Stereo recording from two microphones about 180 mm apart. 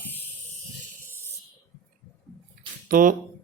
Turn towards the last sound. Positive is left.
turn(degrees=-50)  # may be behind; listen again after turning